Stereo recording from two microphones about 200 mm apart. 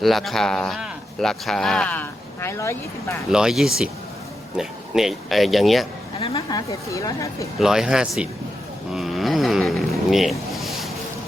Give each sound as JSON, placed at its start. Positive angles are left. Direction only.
{"t": 0.0, "sound": "speech", "side_deg": 0}
{"t": 3.2, "sound": "speech", "side_deg": -5}
{"t": 6.1, "sound": "speech", "side_deg": 30}
{"t": 6.7, "sound": "speech", "side_deg": 15}
{"t": 7.6, "sound": "speech", "side_deg": 0}